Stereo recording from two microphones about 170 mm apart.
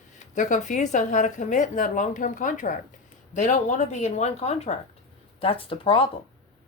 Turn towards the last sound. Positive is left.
turn(degrees=30)  # may be behind; listen again after turning